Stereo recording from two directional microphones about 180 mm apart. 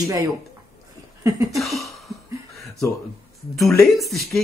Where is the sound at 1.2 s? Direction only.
20° right (ahead or behind).